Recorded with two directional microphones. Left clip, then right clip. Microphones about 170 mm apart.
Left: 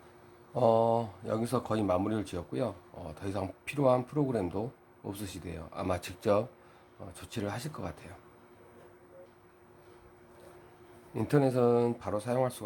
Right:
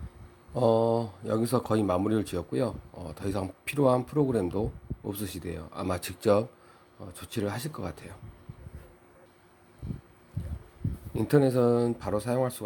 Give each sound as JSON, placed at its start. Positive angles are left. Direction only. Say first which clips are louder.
{"t": 0.5, "sound": "speech", "louder": "right 1 dB", "side_deg": -15}
{"t": 11.1, "sound": "speech", "louder": "right 4 dB", "side_deg": -15}